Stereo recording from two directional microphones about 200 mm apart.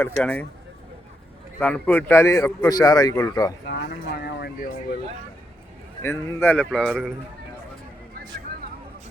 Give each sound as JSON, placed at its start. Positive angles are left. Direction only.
{"t": 0.2, "sound": "speech", "side_deg": 5}
{"t": 1.5, "sound": "a man's voice", "side_deg": 5}
{"t": 3.7, "sound": "speech", "side_deg": 55}
{"t": 6.0, "sound": "a man's voice", "side_deg": 10}